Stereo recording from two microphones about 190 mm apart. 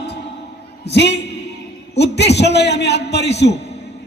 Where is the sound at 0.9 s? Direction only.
65° left (ahead or behind).